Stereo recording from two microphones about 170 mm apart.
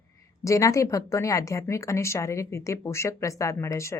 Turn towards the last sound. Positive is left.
turn(degrees=15)  # may be behind; listen again after turning